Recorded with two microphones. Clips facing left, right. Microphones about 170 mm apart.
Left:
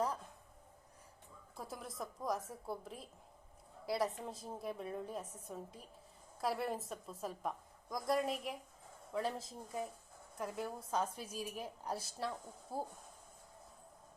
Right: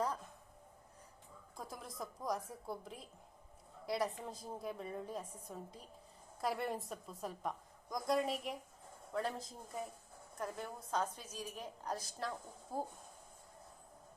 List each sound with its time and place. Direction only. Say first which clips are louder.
1.5 s a woman's voice: left 1 dB; 5° left (ahead or behind)